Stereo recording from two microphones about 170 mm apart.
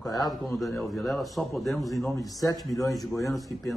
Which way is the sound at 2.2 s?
20° left (ahead or behind).